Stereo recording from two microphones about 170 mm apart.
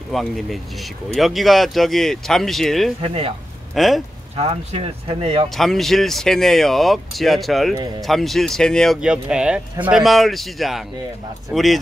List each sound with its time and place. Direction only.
0.1 s speech: centre (ahead or behind)
3.0 s speech: 35° right (ahead or behind)
3.7 s speech: centre (ahead or behind)
4.4 s speech: 35° right (ahead or behind)
5.6 s speech: centre (ahead or behind)